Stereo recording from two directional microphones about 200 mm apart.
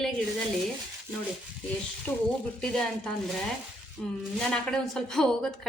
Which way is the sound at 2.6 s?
5° left (ahead or behind).